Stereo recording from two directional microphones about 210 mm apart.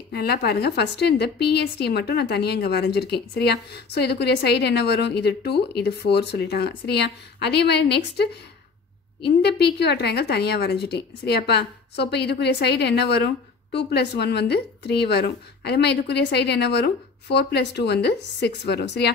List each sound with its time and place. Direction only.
0.1 s a woman's voice: 50° left (ahead or behind)